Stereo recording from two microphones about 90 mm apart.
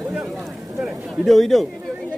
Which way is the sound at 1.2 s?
Centre (ahead or behind).